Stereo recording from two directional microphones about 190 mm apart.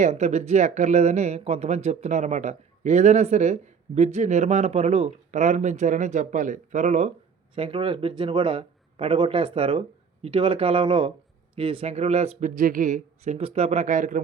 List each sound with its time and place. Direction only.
0.0 s speech: 35° right (ahead or behind)